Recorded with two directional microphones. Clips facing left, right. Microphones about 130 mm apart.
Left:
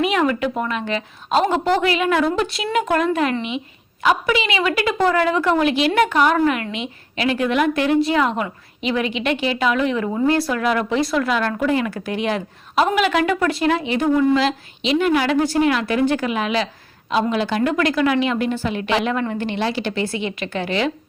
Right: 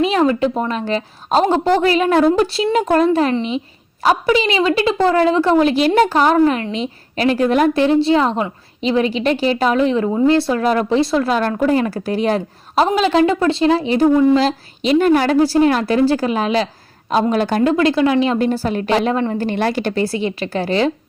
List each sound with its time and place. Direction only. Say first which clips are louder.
0.0 s a woman's voice: right 4 dB; 30° right (ahead or behind)
17.6 s a woman's voice: right 5 dB; 25° right (ahead or behind)